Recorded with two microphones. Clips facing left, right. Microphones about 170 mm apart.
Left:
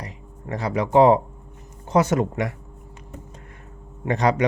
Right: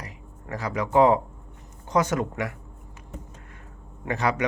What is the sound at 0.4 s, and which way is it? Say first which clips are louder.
Speech: left 4 dB; 25° left (ahead or behind).